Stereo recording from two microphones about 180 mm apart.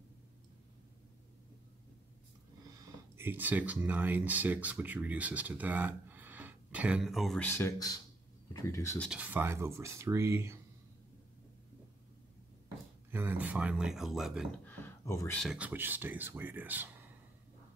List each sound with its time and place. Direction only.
3.2 s speech: 10° right (ahead or behind); by 9.0 s 15° left (ahead or behind)
9.0 s speech: 5° right (ahead or behind)
13.1 s speech: 10° right (ahead or behind)
14.7 s a sound: 15° left (ahead or behind)
15.3 s speech: 5° right (ahead or behind)